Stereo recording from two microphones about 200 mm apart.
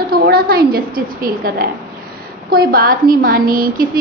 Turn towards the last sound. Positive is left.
turn(degrees=-45)  # may be behind; listen again after turning